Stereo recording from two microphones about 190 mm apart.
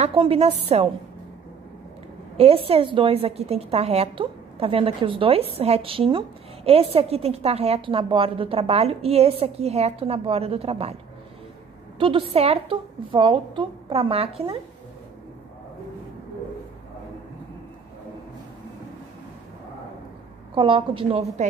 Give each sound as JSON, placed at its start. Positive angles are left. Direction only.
{"t": 0.0, "sound": "a woman's voice", "side_deg": -30}
{"t": 2.3, "sound": "a woman's voice", "side_deg": -30}
{"t": 12.0, "sound": "a woman's voice", "side_deg": -30}
{"t": 20.5, "sound": "a woman's voice", "side_deg": -25}